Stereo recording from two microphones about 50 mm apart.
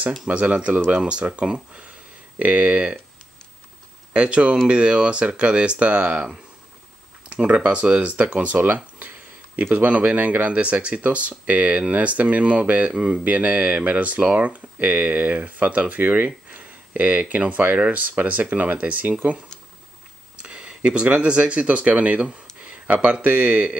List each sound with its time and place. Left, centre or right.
0.3 s speech: right
4.1 s speech: right
20.4 s speech: centre
22.6 s a sound: right
23.0 s speech: right